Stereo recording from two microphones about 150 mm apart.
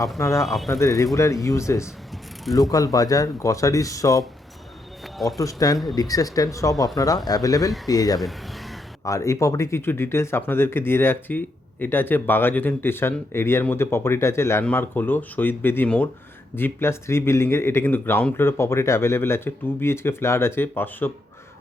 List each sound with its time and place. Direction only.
0.2 s speech: 20° left (ahead or behind)
0.4 s speech: centre (ahead or behind)
0.7 s speech: 20° left (ahead or behind)
5.4 s speech: 25° left (ahead or behind)
8.2 s a sound: centre (ahead or behind)
9.0 s speech: 20° left (ahead or behind)